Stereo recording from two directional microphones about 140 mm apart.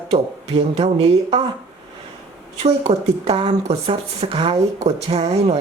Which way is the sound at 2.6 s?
45° right (ahead or behind).